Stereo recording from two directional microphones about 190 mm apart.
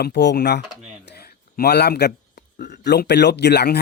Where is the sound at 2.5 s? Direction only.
65° left (ahead or behind).